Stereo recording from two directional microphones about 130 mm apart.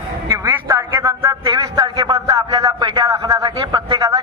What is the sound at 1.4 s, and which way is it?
A man's voice, 35° right (ahead or behind).